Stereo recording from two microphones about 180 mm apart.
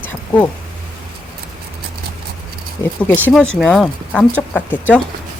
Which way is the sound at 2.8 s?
5° left (ahead or behind).